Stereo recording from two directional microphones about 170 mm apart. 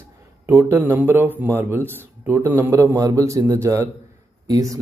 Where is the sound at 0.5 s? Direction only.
15° right (ahead or behind).